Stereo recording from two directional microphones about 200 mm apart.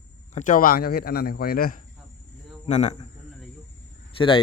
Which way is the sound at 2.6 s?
35° left (ahead or behind).